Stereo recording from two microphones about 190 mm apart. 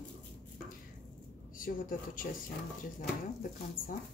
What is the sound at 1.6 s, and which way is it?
Speech, 45° left (ahead or behind).